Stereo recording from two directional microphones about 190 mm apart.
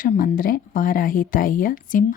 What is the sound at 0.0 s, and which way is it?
Speech, 50° left (ahead or behind).